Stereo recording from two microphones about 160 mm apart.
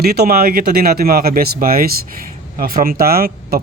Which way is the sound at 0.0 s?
80° right.